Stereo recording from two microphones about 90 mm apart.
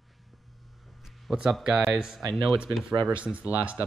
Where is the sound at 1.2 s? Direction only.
5° right (ahead or behind).